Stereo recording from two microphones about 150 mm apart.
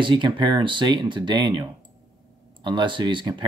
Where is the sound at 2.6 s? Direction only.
30° right (ahead or behind).